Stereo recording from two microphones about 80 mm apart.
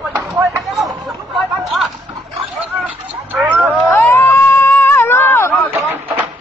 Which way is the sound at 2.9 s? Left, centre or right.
Centre.